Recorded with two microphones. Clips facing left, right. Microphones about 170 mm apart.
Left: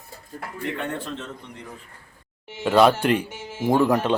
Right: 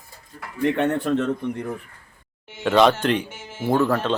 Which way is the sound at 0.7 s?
65° right (ahead or behind).